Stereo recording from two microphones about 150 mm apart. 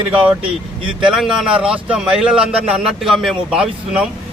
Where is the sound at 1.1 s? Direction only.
5° right (ahead or behind).